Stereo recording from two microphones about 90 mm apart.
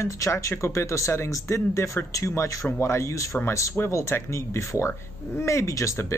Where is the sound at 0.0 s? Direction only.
35° left (ahead or behind).